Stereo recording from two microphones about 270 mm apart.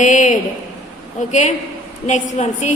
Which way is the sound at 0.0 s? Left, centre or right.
Left.